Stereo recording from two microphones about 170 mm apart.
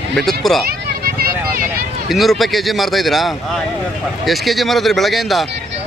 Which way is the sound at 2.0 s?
Centre (ahead or behind).